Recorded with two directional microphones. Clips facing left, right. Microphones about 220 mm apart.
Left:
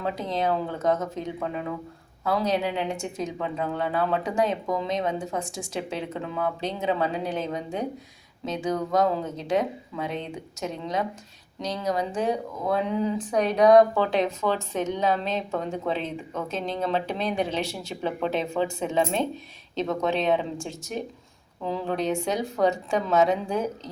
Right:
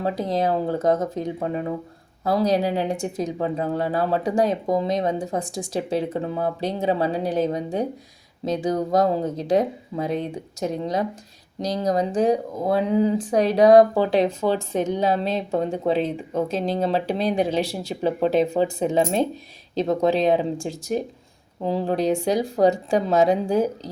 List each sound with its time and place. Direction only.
0.0 s speech: 35° right (ahead or behind)